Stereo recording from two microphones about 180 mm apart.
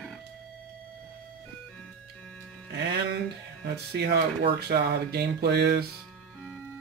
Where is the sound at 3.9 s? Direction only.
50° right (ahead or behind).